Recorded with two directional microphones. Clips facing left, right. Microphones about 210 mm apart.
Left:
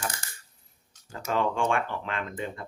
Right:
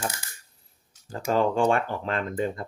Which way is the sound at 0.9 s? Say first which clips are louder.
Right 3 dB; 10° right (ahead or behind).